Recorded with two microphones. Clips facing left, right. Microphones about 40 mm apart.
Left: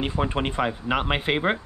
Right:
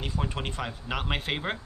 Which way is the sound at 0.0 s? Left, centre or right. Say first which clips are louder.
Left 7 dB; left.